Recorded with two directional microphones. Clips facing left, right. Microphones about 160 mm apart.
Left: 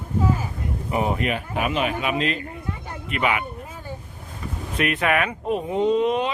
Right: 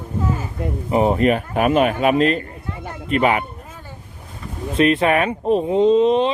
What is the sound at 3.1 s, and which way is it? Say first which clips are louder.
Music: right 6 dB; 40° right (ahead or behind).